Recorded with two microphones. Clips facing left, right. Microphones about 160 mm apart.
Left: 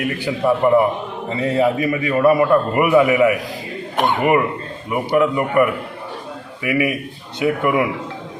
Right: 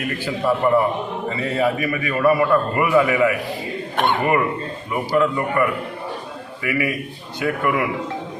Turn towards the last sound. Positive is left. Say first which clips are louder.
# left 3 dB
turn(degrees=15)  # may be behind; listen again after turning